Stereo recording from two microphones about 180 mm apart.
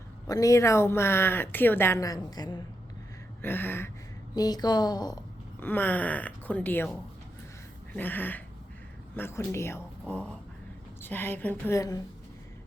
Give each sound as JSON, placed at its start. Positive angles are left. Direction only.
{"t": 0.3, "sound": "speech", "side_deg": 20}
{"t": 3.4, "sound": "a woman's voice", "side_deg": 10}
{"t": 5.5, "sound": "speech", "side_deg": 10}
{"t": 7.9, "sound": "speech", "side_deg": 10}